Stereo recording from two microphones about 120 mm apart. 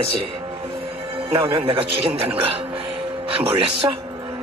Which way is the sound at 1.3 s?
45° right (ahead or behind).